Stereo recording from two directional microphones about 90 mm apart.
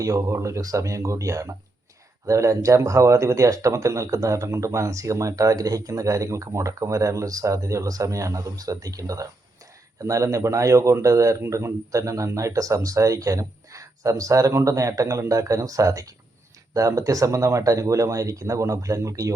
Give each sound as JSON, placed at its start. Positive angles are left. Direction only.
{"t": 0.0, "sound": "speech", "side_deg": -35}